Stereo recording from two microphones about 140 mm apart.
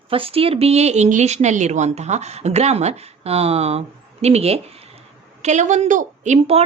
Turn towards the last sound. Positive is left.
turn(degrees=-60)  # may be behind; listen again after turning